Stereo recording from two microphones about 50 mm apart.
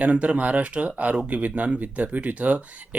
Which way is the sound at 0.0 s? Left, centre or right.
Right.